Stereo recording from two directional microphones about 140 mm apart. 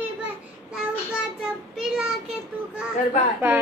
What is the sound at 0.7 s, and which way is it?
Child singing, 5° right (ahead or behind).